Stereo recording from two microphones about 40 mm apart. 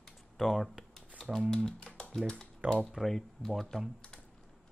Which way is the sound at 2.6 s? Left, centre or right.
Right.